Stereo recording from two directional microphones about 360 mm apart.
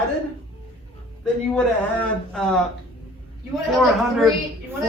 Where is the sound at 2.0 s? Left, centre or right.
Centre.